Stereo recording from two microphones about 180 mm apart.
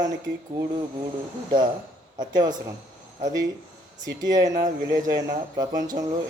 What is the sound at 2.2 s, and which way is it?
Speech, 25° right (ahead or behind).